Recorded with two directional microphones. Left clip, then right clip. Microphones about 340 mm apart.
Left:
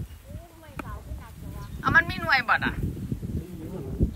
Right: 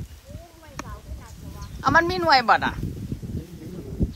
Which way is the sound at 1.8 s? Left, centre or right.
Centre.